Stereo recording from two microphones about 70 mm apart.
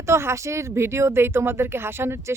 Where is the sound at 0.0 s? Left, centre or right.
Right.